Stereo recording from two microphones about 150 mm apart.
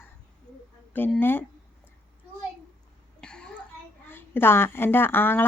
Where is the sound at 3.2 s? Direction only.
5° left (ahead or behind).